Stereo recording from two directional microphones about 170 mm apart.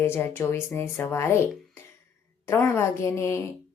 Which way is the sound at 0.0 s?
15° left (ahead or behind).